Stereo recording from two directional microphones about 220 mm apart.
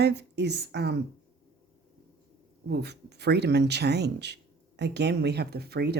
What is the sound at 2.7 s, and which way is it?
Speech, 50° right (ahead or behind).